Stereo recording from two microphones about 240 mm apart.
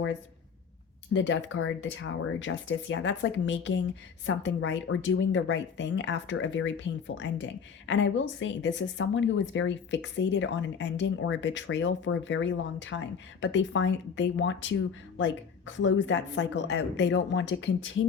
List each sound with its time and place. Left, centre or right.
1.1 s speech: left